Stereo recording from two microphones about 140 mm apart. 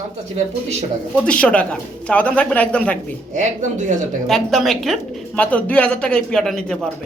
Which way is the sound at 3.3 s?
60° right (ahead or behind).